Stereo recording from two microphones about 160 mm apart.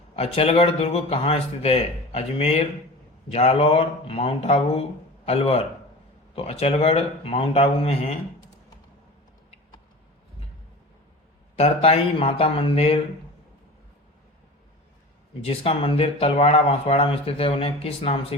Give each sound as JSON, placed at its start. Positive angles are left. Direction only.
{"t": 0.2, "sound": "speech", "side_deg": 40}
{"t": 11.5, "sound": "speech", "side_deg": 40}
{"t": 15.4, "sound": "speech", "side_deg": 35}